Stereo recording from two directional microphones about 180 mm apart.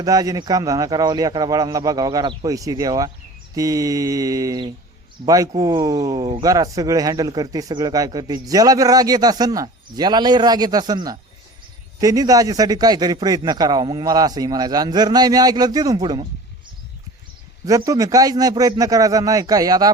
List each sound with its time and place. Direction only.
0.0 s speech: 20° right (ahead or behind)
17.7 s speech: 20° right (ahead or behind)